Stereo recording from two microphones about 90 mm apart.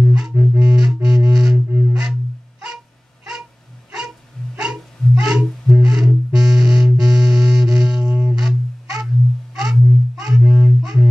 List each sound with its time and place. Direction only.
0.1 s music: 10° right (ahead or behind)
4.6 s music: 5° right (ahead or behind)